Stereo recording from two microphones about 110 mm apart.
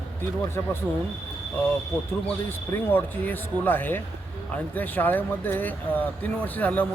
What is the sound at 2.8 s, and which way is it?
Speech, 15° left (ahead or behind).